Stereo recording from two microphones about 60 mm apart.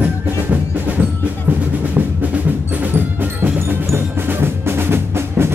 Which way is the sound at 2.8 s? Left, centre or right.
Right.